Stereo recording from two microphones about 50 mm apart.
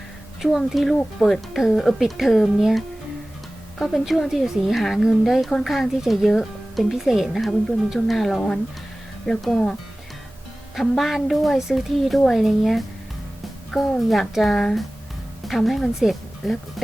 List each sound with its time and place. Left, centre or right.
0.4 s a woman's voice: centre
9.5 s speech: centre
10.8 s speech: centre
13.7 s a woman's voice: centre
14.0 s speech: centre